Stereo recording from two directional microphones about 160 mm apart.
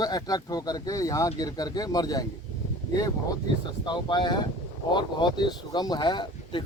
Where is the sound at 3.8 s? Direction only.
30° left (ahead or behind).